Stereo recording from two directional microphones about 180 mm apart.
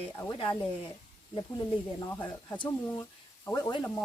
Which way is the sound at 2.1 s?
10° left (ahead or behind).